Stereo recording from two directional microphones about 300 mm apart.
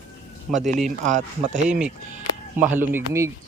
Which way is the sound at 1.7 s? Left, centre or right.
Centre.